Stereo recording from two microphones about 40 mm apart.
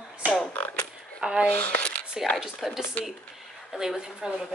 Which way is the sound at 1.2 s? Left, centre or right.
Centre.